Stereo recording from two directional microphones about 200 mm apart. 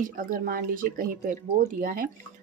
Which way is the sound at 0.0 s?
40° right (ahead or behind).